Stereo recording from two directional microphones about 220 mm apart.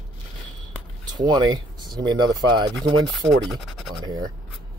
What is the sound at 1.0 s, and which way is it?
Speech, 20° right (ahead or behind).